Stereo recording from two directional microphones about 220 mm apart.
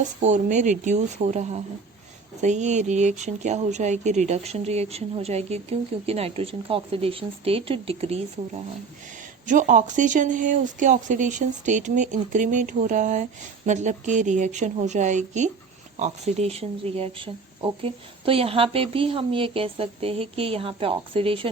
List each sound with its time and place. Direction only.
0.2 s speech: 35° right (ahead or behind)